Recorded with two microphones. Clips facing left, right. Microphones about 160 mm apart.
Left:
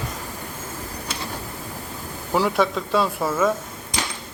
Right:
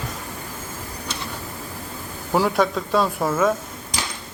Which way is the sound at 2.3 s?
5° right (ahead or behind).